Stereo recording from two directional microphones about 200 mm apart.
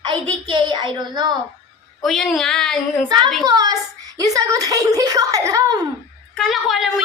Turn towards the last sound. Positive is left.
turn(degrees=0)  # may be behind; listen again after turning